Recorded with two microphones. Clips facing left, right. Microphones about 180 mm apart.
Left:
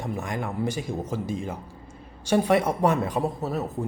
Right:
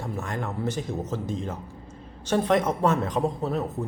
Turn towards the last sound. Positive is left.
turn(degrees=5)  # may be behind; listen again after turning